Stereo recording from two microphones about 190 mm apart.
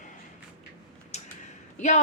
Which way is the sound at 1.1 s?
35° left (ahead or behind).